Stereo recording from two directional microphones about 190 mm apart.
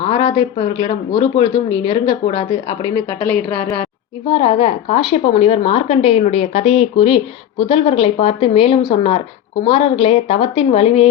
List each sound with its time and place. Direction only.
0.0 s a woman's voice: 25° left (ahead or behind)
3.2 s a woman's voice: 10° left (ahead or behind)
4.3 s a woman's voice: 30° left (ahead or behind)